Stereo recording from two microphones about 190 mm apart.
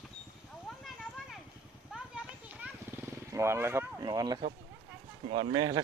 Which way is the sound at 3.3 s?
15° right (ahead or behind).